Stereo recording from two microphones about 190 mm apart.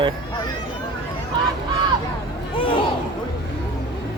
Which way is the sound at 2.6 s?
25° left (ahead or behind).